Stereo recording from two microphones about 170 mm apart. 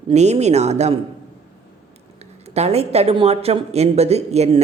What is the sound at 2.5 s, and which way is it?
A woman's voice, 40° right (ahead or behind).